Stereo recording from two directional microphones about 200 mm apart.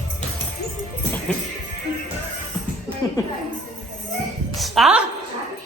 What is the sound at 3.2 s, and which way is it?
Speech, 15° left (ahead or behind).